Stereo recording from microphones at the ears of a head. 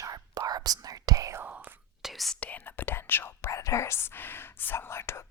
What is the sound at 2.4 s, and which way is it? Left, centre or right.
Whispering, left.